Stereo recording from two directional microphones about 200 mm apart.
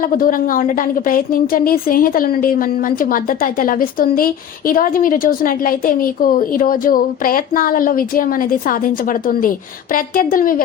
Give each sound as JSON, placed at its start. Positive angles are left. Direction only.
{"t": 0.0, "sound": "a woman's voice", "side_deg": 45}